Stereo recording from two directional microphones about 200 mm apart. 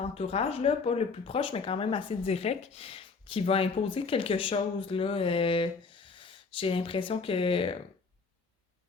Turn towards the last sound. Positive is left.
turn(degrees=25)  # may be behind; listen again after turning